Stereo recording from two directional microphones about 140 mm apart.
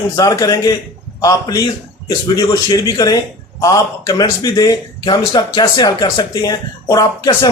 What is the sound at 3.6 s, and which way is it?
Speech, 25° left (ahead or behind).